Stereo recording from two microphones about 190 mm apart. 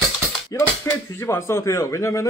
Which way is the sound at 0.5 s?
15° left (ahead or behind).